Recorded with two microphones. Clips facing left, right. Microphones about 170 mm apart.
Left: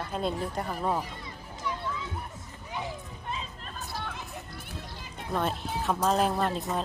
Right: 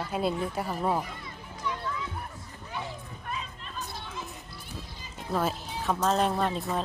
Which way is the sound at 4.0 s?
60° left (ahead or behind).